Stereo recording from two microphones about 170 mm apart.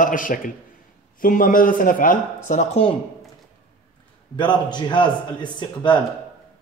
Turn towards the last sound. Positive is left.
turn(degrees=25)  # may be behind; listen again after turning